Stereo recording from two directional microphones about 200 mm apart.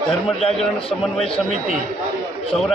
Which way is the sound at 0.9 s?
30° left (ahead or behind).